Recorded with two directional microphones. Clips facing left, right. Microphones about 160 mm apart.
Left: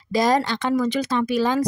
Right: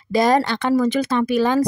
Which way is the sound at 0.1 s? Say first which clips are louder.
Right 3 dB; 60° right (ahead or behind).